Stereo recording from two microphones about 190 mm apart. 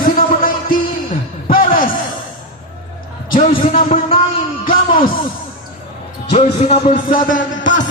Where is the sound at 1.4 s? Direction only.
50° left (ahead or behind).